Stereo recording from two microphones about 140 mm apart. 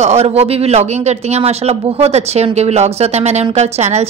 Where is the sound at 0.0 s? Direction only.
50° right (ahead or behind).